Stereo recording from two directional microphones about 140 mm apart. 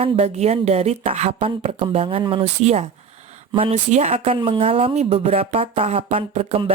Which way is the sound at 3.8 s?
55° right (ahead or behind).